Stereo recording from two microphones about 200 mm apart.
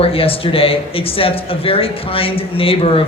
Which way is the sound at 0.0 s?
30° left (ahead or behind).